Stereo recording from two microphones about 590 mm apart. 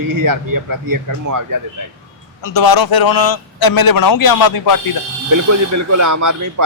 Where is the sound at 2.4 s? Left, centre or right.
Left.